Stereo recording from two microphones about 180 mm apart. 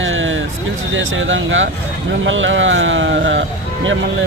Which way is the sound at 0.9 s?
90° right.